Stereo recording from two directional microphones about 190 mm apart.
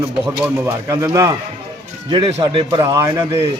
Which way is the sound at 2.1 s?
30° right (ahead or behind).